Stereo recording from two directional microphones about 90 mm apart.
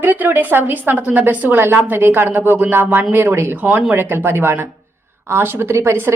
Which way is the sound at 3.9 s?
25° right (ahead or behind).